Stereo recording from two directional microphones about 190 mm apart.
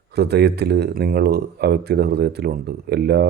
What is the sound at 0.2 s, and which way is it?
A man's voice, 60° right (ahead or behind).